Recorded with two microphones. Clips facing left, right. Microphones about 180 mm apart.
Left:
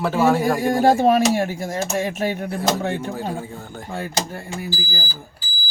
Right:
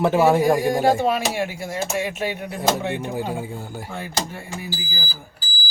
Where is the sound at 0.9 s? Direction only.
40° left (ahead or behind).